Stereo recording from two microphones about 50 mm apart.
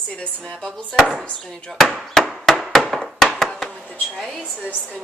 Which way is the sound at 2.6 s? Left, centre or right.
Centre.